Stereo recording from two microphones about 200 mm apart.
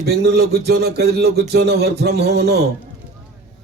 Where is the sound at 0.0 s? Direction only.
55° right (ahead or behind).